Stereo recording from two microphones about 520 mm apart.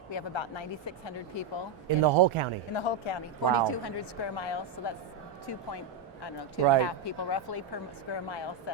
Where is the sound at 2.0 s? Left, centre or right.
Right.